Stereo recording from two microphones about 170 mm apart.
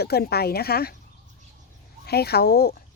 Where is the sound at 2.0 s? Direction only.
70° left (ahead or behind).